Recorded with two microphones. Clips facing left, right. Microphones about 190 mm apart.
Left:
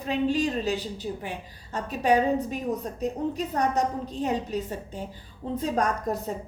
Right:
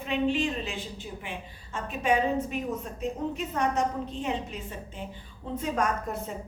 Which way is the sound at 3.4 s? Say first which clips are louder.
Left 2 dB; 35° left (ahead or behind).